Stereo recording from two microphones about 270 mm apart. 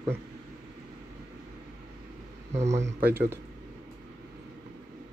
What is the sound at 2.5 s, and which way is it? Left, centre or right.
Speech, right.